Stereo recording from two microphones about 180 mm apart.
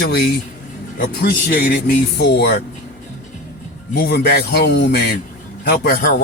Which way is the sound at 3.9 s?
55° left (ahead or behind).